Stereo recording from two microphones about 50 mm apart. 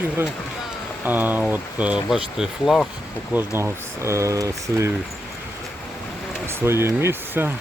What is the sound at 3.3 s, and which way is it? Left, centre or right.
Speech, right.